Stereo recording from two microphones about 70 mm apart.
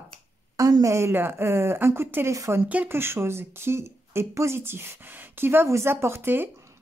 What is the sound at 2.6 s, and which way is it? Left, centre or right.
Speech, right.